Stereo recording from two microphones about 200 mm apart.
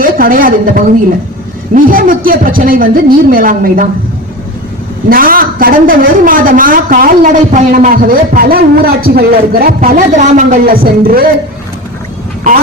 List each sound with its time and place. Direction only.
0.0 s a woman's voice: 45° right (ahead or behind)
5.0 s a woman's voice: 45° right (ahead or behind)